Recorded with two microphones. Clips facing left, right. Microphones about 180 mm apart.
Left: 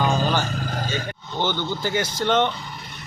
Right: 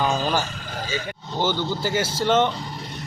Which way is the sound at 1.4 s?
10° right (ahead or behind).